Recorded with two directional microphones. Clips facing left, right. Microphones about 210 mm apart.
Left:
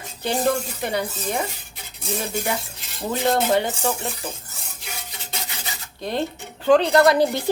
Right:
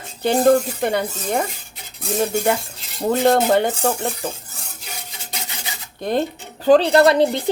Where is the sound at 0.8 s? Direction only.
55° right (ahead or behind).